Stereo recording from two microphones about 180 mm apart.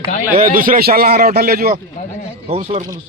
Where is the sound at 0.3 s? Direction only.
50° right (ahead or behind).